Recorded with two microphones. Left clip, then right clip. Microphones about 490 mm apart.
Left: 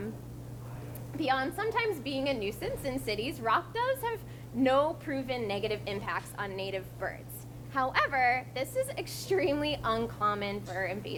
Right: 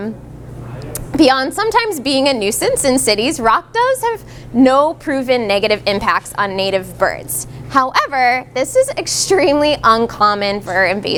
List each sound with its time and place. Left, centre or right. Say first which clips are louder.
1.2 s a woman's voice: right 18 dB; right